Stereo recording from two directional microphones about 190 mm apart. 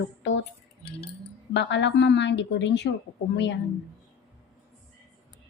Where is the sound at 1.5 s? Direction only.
70° left (ahead or behind).